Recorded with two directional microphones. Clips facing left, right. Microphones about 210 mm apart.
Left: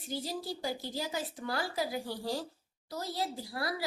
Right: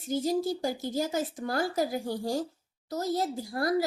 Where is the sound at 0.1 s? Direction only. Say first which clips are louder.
Right 10 dB; 45° right (ahead or behind).